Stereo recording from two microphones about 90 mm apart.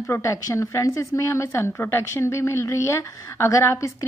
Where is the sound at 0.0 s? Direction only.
35° left (ahead or behind).